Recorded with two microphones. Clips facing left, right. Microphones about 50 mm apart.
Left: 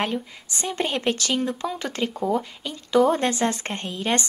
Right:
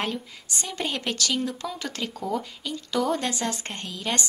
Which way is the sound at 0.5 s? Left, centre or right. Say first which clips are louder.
Left 4 dB; left.